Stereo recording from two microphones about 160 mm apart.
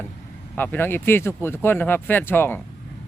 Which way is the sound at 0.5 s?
10° left (ahead or behind).